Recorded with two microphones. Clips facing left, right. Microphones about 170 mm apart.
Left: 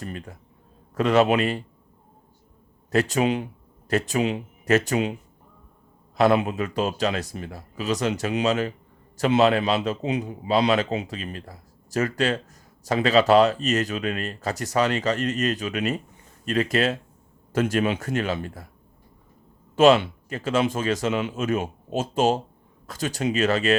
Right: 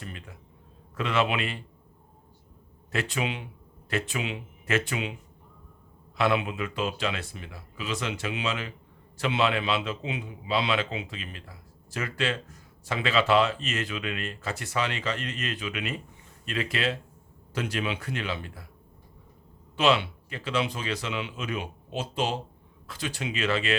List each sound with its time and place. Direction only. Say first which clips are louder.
0.0 s a man's voice: left 7 dB; 40° left (ahead or behind)
2.9 s speech: left 9 dB; 40° left (ahead or behind)
6.1 s a man's voice: left 6 dB; 40° left (ahead or behind)
19.7 s speech: left 8 dB; 45° left (ahead or behind)